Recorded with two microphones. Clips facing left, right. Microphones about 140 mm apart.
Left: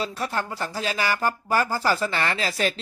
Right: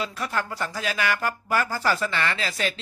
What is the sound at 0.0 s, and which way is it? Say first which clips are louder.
Speech: left 1 dB; 30° left (ahead or behind).